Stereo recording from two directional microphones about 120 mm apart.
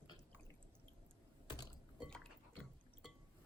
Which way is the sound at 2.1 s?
5° left (ahead or behind).